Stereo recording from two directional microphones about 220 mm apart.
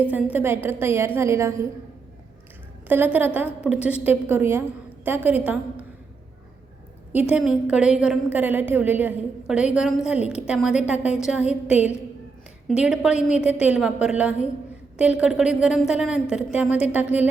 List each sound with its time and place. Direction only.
0.1 s a woman's voice: 5° right (ahead or behind)
2.8 s a woman's voice: 10° right (ahead or behind)
7.1 s a woman's voice: 5° right (ahead or behind)